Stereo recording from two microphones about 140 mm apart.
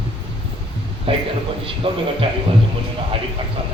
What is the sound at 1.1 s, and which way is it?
Speech, 40° right (ahead or behind).